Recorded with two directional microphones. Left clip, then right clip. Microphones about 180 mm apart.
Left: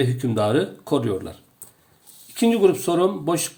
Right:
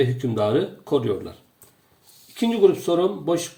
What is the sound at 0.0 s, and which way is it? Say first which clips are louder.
Speech: even; 30° left (ahead or behind).